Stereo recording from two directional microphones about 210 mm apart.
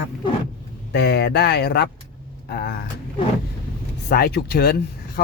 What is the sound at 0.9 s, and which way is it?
Speech, 50° left (ahead or behind).